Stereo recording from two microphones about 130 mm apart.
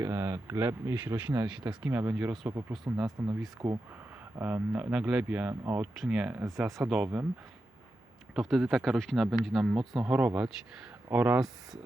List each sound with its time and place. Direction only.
0.0 s speech: 20° right (ahead or behind)
2.5 s speech: 25° right (ahead or behind)
3.2 s speech: 10° right (ahead or behind)
3.6 s speech: 35° right (ahead or behind)
4.4 s speech: 20° right (ahead or behind)
5.9 s speech: 5° right (ahead or behind)
8.4 s speech: centre (ahead or behind)